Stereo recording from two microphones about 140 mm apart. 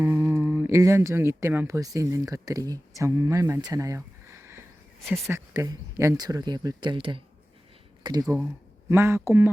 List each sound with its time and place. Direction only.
0.0 s speech: 20° right (ahead or behind)
5.0 s speech: centre (ahead or behind)
5.3 s speech: 20° right (ahead or behind)